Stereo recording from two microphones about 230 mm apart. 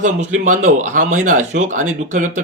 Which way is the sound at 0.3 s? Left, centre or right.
Right.